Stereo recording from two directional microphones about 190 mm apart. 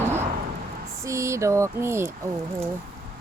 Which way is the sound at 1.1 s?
15° right (ahead or behind).